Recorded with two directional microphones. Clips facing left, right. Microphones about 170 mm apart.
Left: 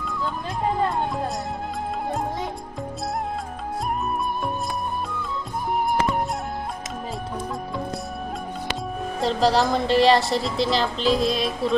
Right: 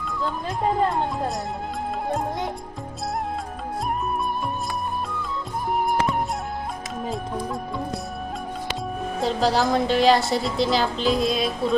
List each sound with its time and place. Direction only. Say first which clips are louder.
9.2 s a woman's voice: left 1 dB; centre (ahead or behind)